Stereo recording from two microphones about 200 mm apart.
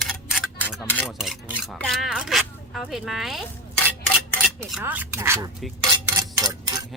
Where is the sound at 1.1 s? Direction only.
Centre (ahead or behind).